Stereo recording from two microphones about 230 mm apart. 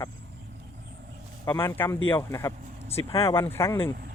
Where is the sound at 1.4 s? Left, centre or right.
Centre.